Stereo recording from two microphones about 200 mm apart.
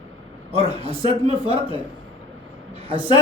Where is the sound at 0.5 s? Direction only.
30° right (ahead or behind).